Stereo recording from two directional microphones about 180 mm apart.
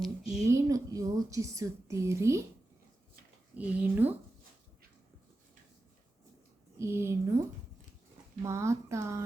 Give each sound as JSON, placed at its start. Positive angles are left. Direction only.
{"t": 0.0, "sound": "a sound", "side_deg": 0}
{"t": 0.4, "sound": "a woman's voice", "side_deg": -20}
{"t": 3.5, "sound": "a woman's voice", "side_deg": -10}
{"t": 6.7, "sound": "a woman's voice", "side_deg": -15}